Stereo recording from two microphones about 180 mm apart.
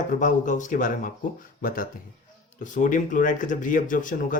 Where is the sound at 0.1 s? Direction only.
45° left (ahead or behind).